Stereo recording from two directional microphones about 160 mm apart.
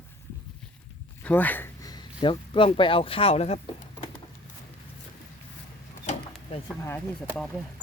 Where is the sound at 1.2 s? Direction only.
10° left (ahead or behind); by 3.6 s 40° left (ahead or behind).